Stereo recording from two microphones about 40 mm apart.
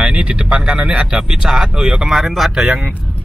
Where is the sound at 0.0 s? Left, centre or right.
Right.